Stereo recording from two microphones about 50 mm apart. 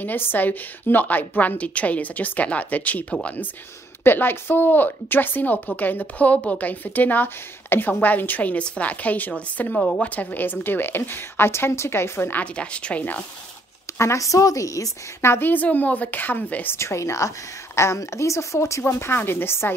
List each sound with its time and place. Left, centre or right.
0.0 s a woman's voice: left
4.0 s a woman's voice: left
12.5 s speech: left
13.9 s a woman's voice: left
15.4 s a woman's voice: left
16.7 s a woman's voice: left